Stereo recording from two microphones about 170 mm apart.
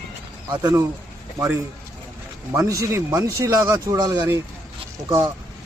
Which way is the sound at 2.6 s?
20° right (ahead or behind).